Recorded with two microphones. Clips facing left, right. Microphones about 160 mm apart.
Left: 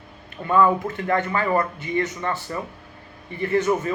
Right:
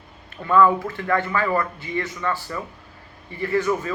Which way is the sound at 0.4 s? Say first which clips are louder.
Right 1 dB; 20° left (ahead or behind).